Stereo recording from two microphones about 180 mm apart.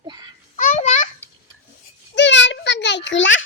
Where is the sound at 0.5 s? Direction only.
45° left (ahead or behind).